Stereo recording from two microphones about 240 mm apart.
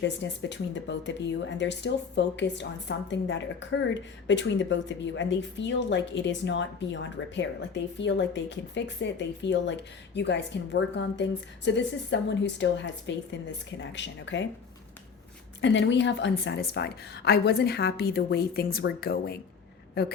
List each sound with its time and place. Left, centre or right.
0.0 s speech: left
15.6 s speech: left